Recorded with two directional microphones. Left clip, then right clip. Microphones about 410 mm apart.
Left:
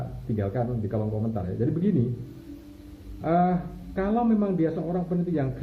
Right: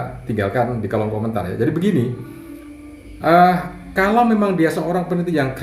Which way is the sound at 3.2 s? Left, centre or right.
Centre.